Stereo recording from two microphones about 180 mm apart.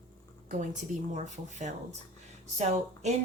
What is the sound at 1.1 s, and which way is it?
Speech, 40° right (ahead or behind).